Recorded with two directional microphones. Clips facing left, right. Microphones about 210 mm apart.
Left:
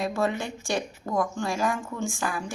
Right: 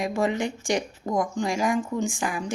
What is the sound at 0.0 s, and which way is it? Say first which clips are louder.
Speech: right 2 dB; 15° right (ahead or behind).